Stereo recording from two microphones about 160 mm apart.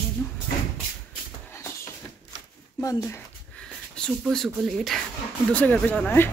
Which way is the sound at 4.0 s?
5° left (ahead or behind).